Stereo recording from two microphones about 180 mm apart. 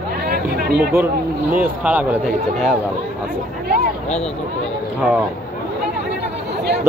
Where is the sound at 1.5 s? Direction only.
10° right (ahead or behind).